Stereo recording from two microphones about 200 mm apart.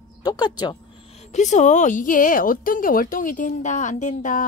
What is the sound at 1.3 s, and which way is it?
Speech, 35° left (ahead or behind).